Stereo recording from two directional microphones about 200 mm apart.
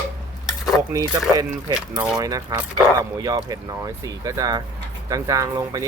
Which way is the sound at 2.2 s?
20° right (ahead or behind).